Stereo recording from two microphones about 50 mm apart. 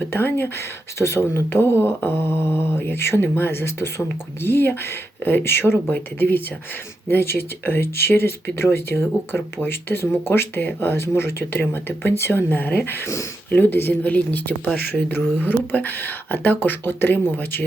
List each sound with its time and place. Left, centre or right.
0.1 s speech: left
0.9 s speech: left
2.1 s mantra: right
2.7 s speech: left
5.9 s speech: left
9.3 s speech: left
14.0 s speech: left